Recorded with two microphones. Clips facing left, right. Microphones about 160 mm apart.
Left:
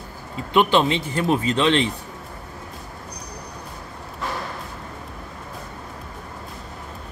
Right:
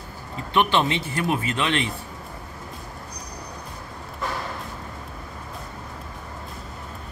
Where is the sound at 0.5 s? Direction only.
15° left (ahead or behind).